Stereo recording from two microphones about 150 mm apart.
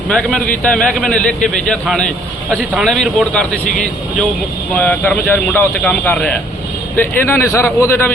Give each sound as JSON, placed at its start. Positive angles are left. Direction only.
{"t": 0.1, "sound": "a man's voice", "side_deg": 5}